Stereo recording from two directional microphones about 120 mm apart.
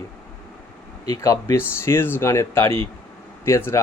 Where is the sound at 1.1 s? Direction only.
25° left (ahead or behind).